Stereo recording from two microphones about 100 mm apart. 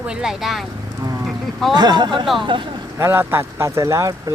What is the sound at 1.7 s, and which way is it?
Speech, 45° right (ahead or behind).